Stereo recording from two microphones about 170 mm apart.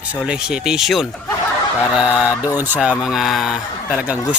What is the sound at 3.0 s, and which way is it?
Speech, 5° right (ahead or behind).